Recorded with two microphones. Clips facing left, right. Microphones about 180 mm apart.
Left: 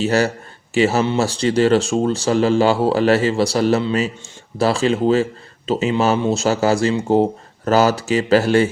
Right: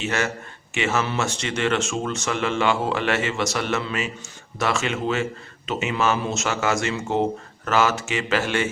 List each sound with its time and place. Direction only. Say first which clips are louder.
0.0 s speech: left 8 dB; 35° left (ahead or behind)